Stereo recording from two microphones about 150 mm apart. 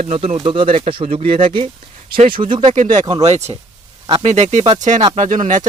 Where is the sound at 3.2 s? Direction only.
45° right (ahead or behind).